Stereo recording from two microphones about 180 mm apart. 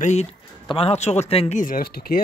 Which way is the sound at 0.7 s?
35° left (ahead or behind).